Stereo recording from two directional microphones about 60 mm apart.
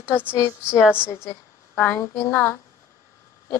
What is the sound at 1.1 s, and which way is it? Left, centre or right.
Speech, left.